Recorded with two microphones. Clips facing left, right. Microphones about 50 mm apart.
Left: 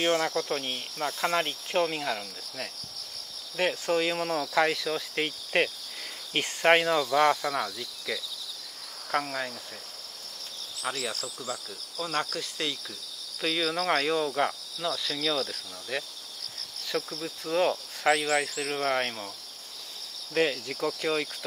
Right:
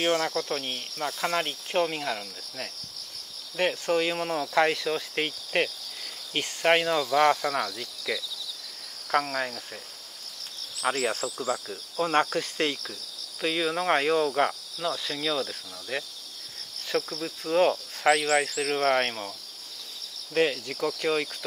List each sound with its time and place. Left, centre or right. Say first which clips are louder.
0.0 s cricket: even; centre
5.5 s insect: left 1 dB; centre
6.3 s cricket: left 1 dB; centre
10.8 s speech: right 6 dB; right
13.4 s cricket: right 2 dB; centre
17.2 s cricket: right 3 dB; centre
18.5 s speech: right 4 dB; right
20.3 s cricket: right 2 dB; centre